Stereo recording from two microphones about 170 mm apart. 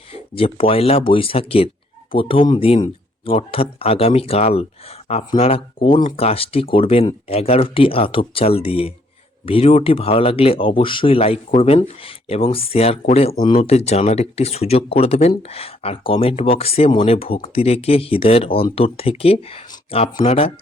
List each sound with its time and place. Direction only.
0.1 s speech: 35° left (ahead or behind)